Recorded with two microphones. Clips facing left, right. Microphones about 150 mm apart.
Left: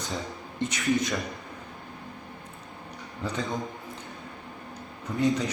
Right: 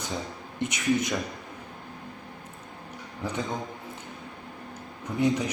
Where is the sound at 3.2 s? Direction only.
20° right (ahead or behind).